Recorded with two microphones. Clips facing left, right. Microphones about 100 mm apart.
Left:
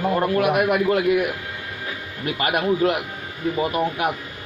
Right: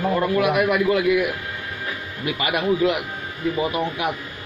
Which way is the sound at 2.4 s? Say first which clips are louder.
Left 1 dB; 45° left (ahead or behind).